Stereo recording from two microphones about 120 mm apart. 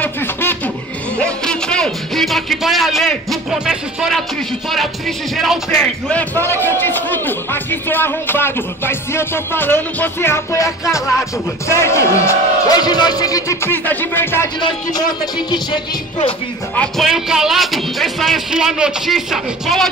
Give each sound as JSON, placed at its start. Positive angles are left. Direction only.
{"t": 0.0, "sound": "a sound", "side_deg": 15}
{"t": 1.2, "sound": "speech", "side_deg": 5}
{"t": 5.8, "sound": "a man's voice", "side_deg": 10}
{"t": 13.7, "sound": "a man's voice", "side_deg": 20}
{"t": 14.6, "sound": "speech", "side_deg": 40}
{"t": 16.7, "sound": "speech", "side_deg": 5}